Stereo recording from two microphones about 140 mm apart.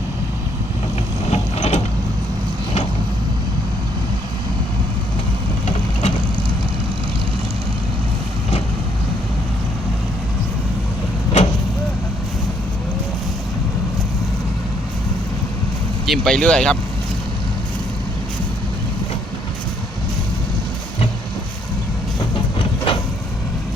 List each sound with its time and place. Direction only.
1.3 s mechanisms: 55° left (ahead or behind)
5.6 s vehicle: 55° left (ahead or behind)
16.0 s speech: 5° left (ahead or behind)
22.5 s vehicle: 40° left (ahead or behind)